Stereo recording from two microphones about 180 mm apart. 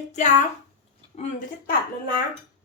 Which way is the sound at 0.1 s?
40° left (ahead or behind).